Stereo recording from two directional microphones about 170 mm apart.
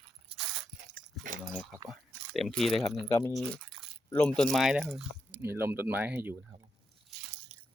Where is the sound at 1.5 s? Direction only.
Centre (ahead or behind).